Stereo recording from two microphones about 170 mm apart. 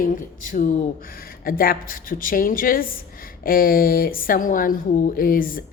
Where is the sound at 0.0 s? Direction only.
55° left (ahead or behind).